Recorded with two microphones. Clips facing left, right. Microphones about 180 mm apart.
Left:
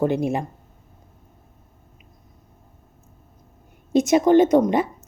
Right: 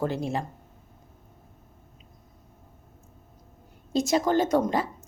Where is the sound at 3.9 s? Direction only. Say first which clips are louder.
Left 8 dB; 20° left (ahead or behind).